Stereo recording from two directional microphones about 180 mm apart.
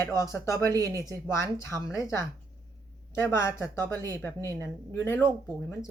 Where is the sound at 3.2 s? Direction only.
15° left (ahead or behind).